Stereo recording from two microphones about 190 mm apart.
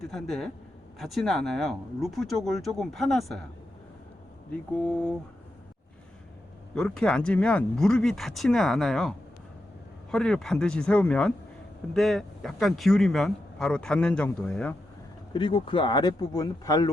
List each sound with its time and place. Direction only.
0.1 s speech: centre (ahead or behind)
4.9 s speech: 5° left (ahead or behind)
6.7 s speech: 5° left (ahead or behind)
15.3 s speech: 25° left (ahead or behind)